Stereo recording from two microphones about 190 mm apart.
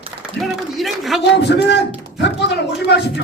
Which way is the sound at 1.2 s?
60° left (ahead or behind).